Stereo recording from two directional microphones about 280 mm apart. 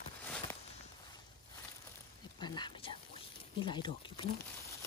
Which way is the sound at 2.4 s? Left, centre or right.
Centre.